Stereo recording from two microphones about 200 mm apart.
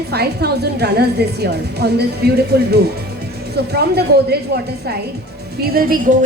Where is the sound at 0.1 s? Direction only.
55° right (ahead or behind).